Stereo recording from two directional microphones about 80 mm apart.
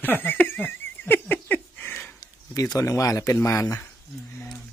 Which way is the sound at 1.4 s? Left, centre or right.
Left.